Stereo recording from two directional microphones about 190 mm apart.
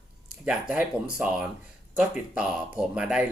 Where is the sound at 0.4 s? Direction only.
5° right (ahead or behind).